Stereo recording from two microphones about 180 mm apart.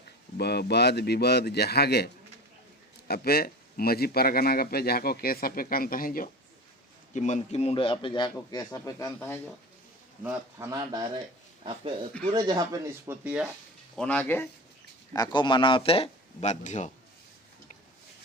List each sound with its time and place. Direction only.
0.3 s speech: 65° left (ahead or behind)
3.1 s a man's voice: 60° left (ahead or behind); by 9.4 s 10° left (ahead or behind)
10.2 s speech: 15° right (ahead or behind)
12.2 s speech: 25° right (ahead or behind)
13.2 s speech: 10° right (ahead or behind)
13.9 s speech: 5° left (ahead or behind)
15.1 s a man's voice: 25° left (ahead or behind); by 16.9 s 40° left (ahead or behind)